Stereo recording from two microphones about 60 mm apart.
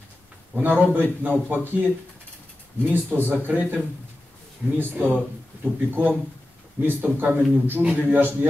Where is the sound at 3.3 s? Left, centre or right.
Right.